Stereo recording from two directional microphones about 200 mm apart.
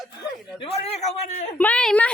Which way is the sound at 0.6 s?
30° left (ahead or behind).